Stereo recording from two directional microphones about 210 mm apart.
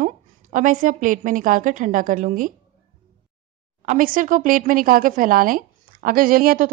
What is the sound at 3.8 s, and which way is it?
A woman's voice, 40° right (ahead or behind).